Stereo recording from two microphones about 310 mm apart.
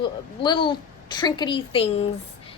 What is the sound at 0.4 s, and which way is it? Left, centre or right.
A woman's voice, centre.